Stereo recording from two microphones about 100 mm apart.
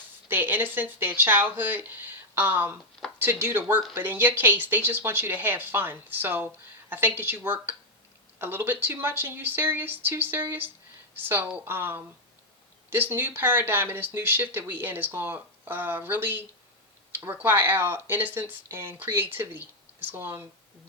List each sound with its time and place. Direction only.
0.3 s a woman's voice: 20° right (ahead or behind)